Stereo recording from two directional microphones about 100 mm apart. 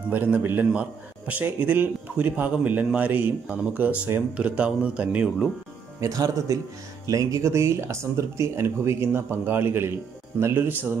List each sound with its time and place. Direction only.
0.1 s a man's voice: 20° right (ahead or behind)
5.9 s speech: 35° right (ahead or behind)